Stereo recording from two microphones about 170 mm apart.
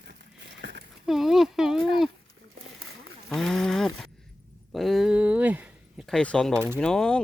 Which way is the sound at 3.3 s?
Centre (ahead or behind).